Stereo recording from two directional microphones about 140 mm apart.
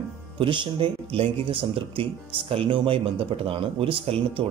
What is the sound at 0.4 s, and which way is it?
Speech, 35° right (ahead or behind).